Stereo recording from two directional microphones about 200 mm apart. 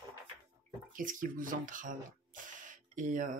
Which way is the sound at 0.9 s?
40° right (ahead or behind).